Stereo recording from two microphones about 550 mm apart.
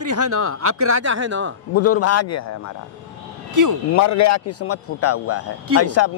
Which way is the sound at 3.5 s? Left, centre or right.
Right.